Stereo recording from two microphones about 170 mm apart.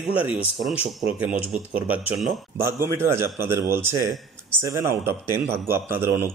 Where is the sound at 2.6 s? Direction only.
15° right (ahead or behind).